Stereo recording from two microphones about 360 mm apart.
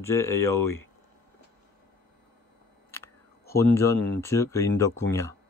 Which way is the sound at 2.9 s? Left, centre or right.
Centre.